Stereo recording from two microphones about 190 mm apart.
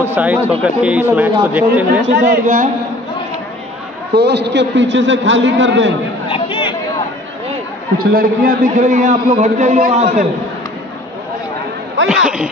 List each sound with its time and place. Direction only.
0.0 s speech: 10° right (ahead or behind)
2.0 s a man's voice: 75° right (ahead or behind)
2.4 s a man's voice: 45° right (ahead or behind)
4.1 s a man's voice: 60° right (ahead or behind)
6.2 s chatter: 25° left (ahead or behind)
8.0 s a man's voice: 50° right (ahead or behind)
12.1 s speech: 5° right (ahead or behind)